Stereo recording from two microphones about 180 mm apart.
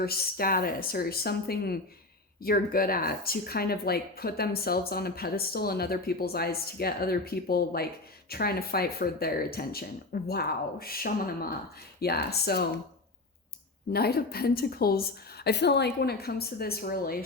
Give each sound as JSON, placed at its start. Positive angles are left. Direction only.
{"t": 0.0, "sound": "speech", "side_deg": 55}
{"t": 13.9, "sound": "speech", "side_deg": 60}